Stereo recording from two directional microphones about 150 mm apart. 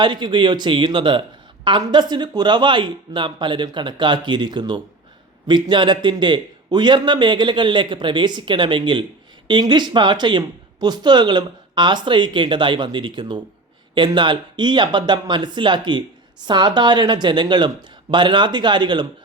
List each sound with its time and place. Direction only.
0.0 s speech: 30° right (ahead or behind)